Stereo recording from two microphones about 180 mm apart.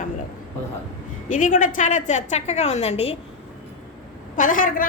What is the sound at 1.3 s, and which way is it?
A woman's voice, 45° left (ahead or behind).